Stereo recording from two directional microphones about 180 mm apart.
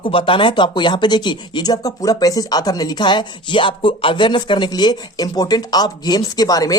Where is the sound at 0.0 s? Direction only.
30° left (ahead or behind).